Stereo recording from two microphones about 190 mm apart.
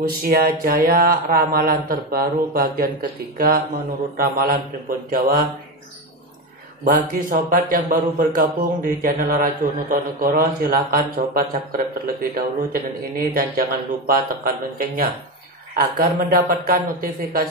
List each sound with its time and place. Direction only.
0.0 s speech: 50° right (ahead or behind)
6.8 s speech: 45° right (ahead or behind)